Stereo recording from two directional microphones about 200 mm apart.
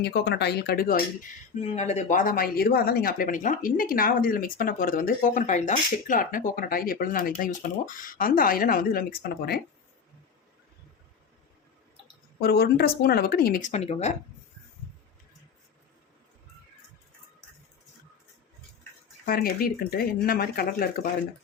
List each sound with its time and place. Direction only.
0.0 s speech: 55° left (ahead or behind)
1.6 s speech: 35° left (ahead or behind)
12.4 s speech: 50° left (ahead or behind); by 14.1 s 35° left (ahead or behind)
19.2 s speech: 50° left (ahead or behind)